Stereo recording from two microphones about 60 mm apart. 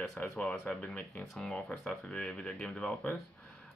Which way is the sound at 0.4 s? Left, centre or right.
Left.